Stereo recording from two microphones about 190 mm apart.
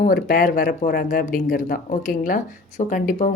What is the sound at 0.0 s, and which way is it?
Speech, 50° left (ahead or behind).